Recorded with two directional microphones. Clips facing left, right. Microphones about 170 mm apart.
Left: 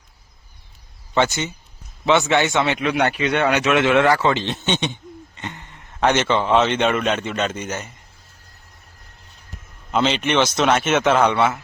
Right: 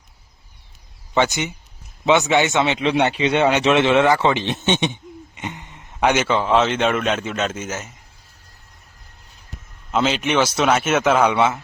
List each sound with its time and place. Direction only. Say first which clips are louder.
1.1 s a man's voice: even; 15° right (ahead or behind)
9.9 s a man's voice: even; centre (ahead or behind)